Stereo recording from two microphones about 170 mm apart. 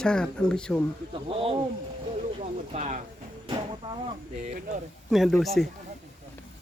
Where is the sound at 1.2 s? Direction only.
35° right (ahead or behind).